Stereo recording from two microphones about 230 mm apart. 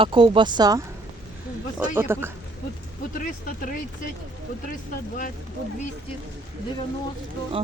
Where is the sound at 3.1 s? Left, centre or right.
Left.